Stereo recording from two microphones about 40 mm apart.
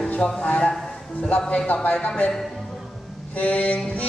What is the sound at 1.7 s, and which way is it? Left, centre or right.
Speech, left.